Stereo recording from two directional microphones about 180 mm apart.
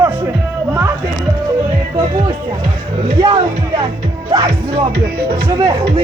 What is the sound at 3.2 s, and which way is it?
Speech, 30° right (ahead or behind).